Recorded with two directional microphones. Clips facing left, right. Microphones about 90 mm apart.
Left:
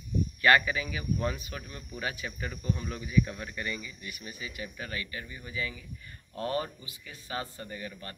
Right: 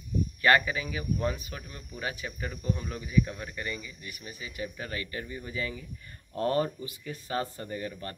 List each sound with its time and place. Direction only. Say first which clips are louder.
0.4 s speech: even; 30° right (ahead or behind)